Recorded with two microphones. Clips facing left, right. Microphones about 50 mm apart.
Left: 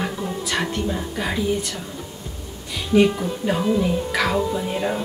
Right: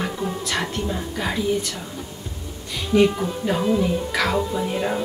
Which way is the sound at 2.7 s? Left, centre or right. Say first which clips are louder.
Left 1 dB; centre.